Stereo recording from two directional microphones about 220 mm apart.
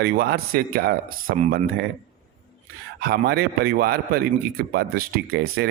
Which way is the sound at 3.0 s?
45° right (ahead or behind).